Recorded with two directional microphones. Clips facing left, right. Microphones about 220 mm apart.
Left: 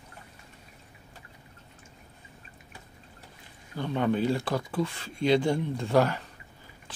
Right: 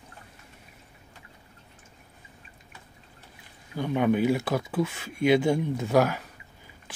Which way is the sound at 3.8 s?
10° right (ahead or behind).